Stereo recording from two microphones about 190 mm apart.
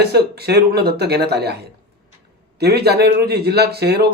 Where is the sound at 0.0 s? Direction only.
55° right (ahead or behind).